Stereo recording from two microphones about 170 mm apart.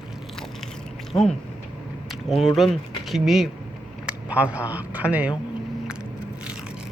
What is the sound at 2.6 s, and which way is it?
Speech, centre (ahead or behind).